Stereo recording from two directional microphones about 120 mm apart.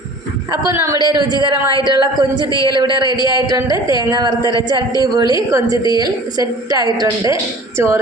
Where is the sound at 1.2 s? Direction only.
35° right (ahead or behind).